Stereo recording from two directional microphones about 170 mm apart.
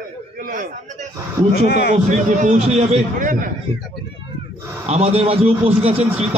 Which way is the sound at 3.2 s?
50° right (ahead or behind).